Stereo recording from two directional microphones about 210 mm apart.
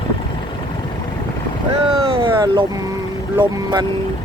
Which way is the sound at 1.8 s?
25° right (ahead or behind).